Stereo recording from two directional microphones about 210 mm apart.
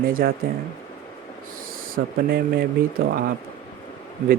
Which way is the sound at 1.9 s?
45° right (ahead or behind).